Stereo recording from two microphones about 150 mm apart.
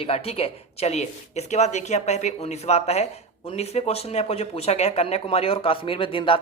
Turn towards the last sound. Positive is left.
turn(degrees=35)  # may be behind; listen again after turning